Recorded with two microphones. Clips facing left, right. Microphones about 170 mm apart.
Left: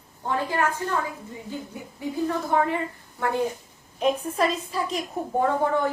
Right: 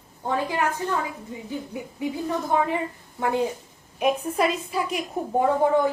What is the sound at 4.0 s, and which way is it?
A woman's voice, 10° right (ahead or behind).